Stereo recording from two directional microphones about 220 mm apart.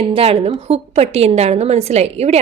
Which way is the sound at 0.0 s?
25° right (ahead or behind).